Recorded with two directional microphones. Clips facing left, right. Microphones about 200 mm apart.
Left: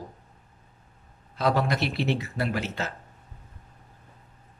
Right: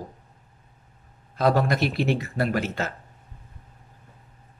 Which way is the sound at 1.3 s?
50° right (ahead or behind).